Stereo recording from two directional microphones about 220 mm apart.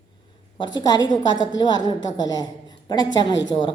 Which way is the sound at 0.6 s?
20° left (ahead or behind).